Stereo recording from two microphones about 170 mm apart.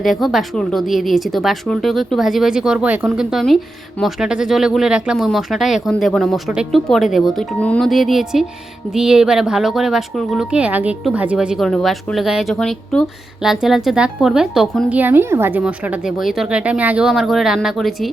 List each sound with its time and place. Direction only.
0.0 s speech: centre (ahead or behind)